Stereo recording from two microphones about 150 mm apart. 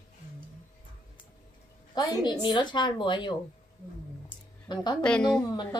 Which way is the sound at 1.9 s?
25° left (ahead or behind).